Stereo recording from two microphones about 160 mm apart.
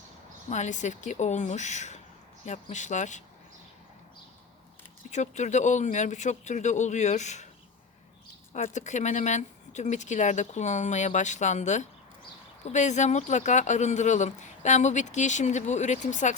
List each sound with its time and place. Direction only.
0.5 s speech: 50° left (ahead or behind)
5.1 s speech: 45° left (ahead or behind)
8.5 s speech: 50° left (ahead or behind)